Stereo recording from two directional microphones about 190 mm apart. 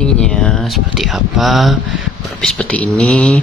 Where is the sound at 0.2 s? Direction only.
5° left (ahead or behind).